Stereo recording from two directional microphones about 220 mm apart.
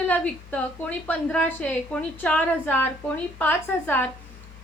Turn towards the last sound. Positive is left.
turn(degrees=10)  # may be behind; listen again after turning